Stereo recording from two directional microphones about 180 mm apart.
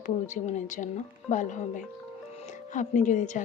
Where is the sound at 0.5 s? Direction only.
45° left (ahead or behind).